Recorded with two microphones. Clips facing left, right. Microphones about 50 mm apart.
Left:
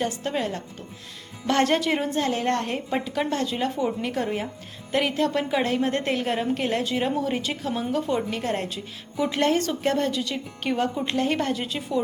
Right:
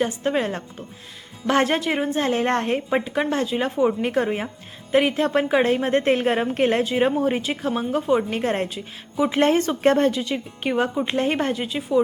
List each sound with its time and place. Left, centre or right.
0.0 s a woman's voice: right
1.5 s speech: centre
2.1 s a woman's voice: right
4.9 s a woman's voice: right
8.6 s a woman's voice: centre
11.5 s speech: centre